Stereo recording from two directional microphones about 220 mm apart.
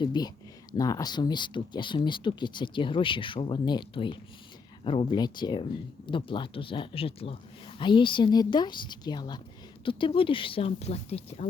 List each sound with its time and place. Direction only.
0.0 s speech: 20° left (ahead or behind)